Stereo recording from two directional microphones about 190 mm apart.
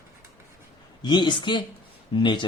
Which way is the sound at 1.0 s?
25° left (ahead or behind).